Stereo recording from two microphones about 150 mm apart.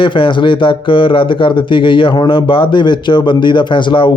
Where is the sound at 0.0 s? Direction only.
35° left (ahead or behind).